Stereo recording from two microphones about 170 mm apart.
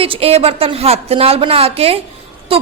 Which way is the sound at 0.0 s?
35° right (ahead or behind).